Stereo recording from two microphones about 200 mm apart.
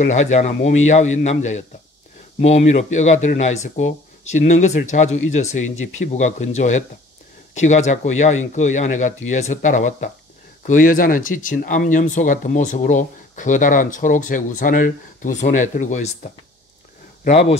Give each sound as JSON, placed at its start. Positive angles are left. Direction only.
{"t": 0.0, "sound": "speech", "side_deg": 35}